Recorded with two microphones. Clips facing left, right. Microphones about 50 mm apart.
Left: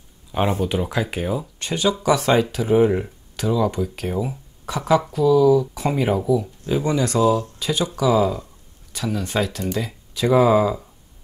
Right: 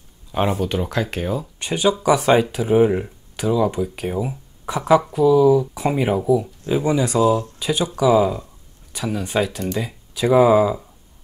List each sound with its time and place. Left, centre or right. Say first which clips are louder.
0.3 s speech: even; centre
1.6 s speech: right 3 dB; centre